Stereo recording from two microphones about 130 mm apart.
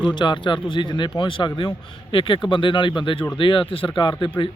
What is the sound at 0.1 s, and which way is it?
Speech, 35° left (ahead or behind).